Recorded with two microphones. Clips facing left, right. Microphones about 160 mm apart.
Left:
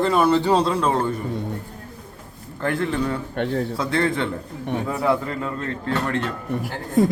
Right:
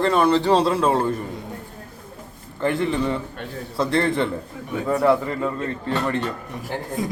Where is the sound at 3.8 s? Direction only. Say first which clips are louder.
Right 6 dB; centre (ahead or behind).